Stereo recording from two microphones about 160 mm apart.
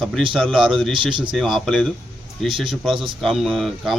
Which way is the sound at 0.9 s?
30° right (ahead or behind).